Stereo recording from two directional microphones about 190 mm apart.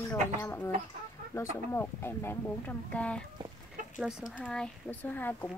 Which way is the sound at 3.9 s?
5° right (ahead or behind).